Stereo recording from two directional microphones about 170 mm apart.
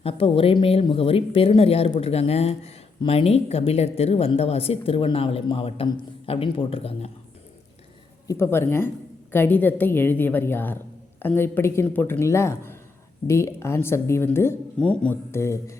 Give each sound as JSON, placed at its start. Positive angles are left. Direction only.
{"t": 0.0, "sound": "speech", "side_deg": 35}
{"t": 8.3, "sound": "speech", "side_deg": 15}